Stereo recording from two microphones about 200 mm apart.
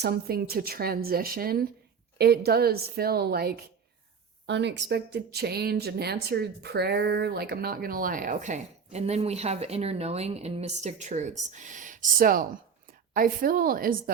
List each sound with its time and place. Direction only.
0.0 s speech: 50° right (ahead or behind)